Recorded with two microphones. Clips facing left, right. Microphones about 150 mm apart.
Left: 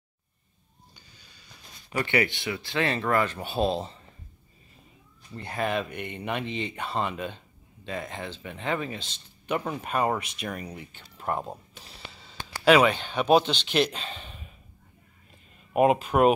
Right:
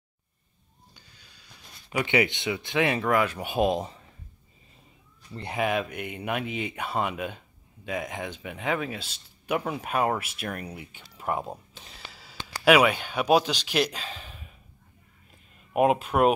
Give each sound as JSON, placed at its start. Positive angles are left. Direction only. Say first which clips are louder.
{"t": 0.9, "sound": "a sound", "louder": "left 1 dB", "side_deg": 0}
{"t": 2.0, "sound": "speech", "louder": "right 1 dB", "side_deg": -15}
{"t": 5.3, "sound": "speech", "louder": "right 2 dB", "side_deg": -25}
{"t": 5.6, "sound": "speech", "louder": "right 1 dB", "side_deg": -10}
{"t": 11.7, "sound": "a sound", "louder": "left 1 dB", "side_deg": 0}
{"t": 12.6, "sound": "a man's voice", "louder": "even", "side_deg": -10}
{"t": 15.7, "sound": "a man's voice", "louder": "left 1 dB", "side_deg": 0}